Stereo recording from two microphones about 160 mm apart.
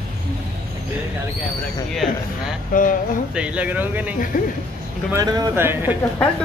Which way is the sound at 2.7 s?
55° left (ahead or behind).